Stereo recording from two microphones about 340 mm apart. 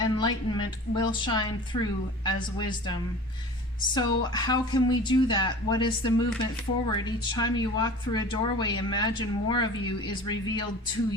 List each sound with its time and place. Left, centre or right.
0.0 s speech: centre
3.9 s speech: centre